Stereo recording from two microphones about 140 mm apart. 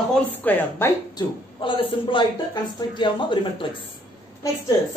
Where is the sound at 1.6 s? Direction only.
35° left (ahead or behind).